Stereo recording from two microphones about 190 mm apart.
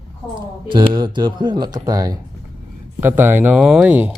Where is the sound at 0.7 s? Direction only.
25° right (ahead or behind).